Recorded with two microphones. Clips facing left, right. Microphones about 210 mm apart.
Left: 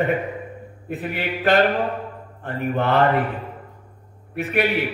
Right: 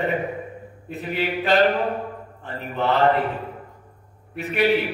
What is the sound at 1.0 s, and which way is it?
A man's voice, 55° left (ahead or behind).